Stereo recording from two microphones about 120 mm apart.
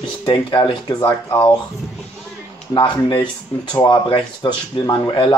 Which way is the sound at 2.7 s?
40° left (ahead or behind).